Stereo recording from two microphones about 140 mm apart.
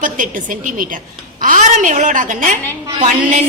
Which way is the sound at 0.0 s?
70° right (ahead or behind).